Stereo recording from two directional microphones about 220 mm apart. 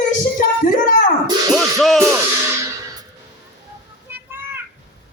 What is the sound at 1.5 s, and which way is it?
Music, centre (ahead or behind).